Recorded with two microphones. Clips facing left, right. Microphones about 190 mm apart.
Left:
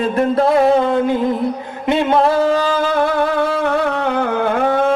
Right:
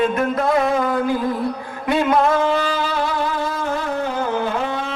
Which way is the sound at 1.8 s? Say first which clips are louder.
Left 3 dB; 25° left (ahead or behind).